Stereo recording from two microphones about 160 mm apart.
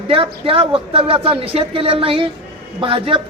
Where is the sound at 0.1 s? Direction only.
35° right (ahead or behind).